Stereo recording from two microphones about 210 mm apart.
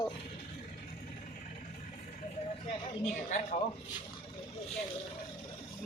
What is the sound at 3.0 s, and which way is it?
Speech, 35° left (ahead or behind).